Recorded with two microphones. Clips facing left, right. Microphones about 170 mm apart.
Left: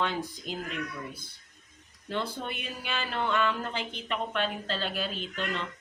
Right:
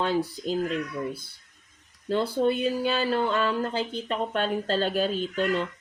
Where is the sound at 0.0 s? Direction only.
35° right (ahead or behind).